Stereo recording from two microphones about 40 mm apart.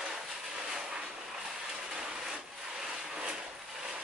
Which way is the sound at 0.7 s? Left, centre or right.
Centre.